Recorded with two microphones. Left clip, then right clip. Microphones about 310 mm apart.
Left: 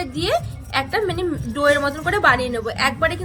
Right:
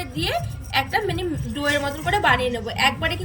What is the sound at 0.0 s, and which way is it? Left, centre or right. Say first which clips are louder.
A woman's voice: left 4 dB; centre.